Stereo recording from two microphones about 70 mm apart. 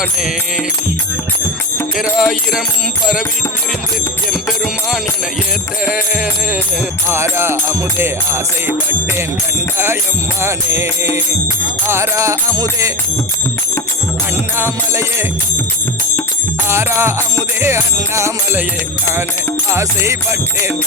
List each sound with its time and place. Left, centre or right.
2.0 s speech: centre
4.3 s music: centre
7.1 s music: right
14.5 s music: right
16.6 s music: right
19.7 s music: right